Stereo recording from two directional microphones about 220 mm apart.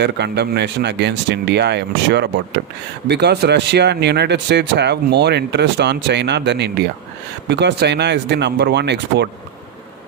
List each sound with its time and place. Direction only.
0.0 s speech: 50° right (ahead or behind)